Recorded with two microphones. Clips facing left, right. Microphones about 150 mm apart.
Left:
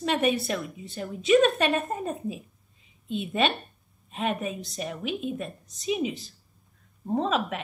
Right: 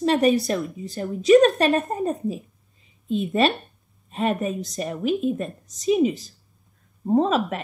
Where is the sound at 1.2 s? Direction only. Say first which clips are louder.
Right 6 dB; 40° right (ahead or behind).